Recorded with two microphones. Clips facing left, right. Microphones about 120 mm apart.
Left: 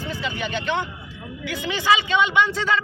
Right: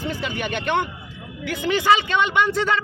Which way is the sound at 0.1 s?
55° right (ahead or behind).